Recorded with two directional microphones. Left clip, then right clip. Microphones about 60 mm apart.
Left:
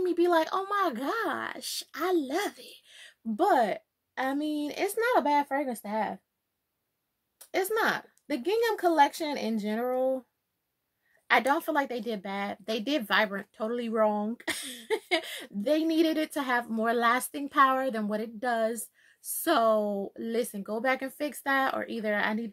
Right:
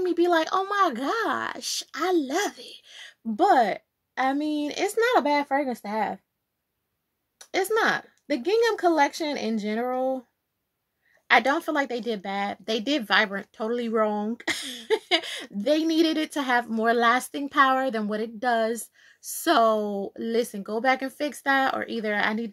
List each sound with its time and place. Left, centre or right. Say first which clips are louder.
0.0 s speech: right 3 dB; right
1.2 s speech: right 5 dB; right
1.9 s speech: right 3 dB; right
2.3 s speech: right 4 dB; right
2.6 s a sound: right 6 dB; right
3.3 s speech: right 5 dB; centre; by 6.1 s right
7.3 s speech: right 4 dB; right
11.2 s speech: right 4 dB; centre; by 22.5 s right